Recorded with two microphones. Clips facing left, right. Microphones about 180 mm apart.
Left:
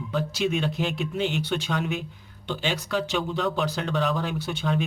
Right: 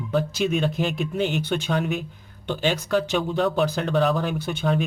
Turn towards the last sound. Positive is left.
turn(degrees=-50)  # may be behind; listen again after turning